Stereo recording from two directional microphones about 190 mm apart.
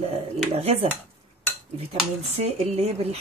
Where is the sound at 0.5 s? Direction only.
35° right (ahead or behind).